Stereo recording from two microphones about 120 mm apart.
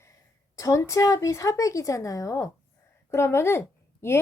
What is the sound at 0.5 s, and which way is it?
A woman's voice, 25° left (ahead or behind).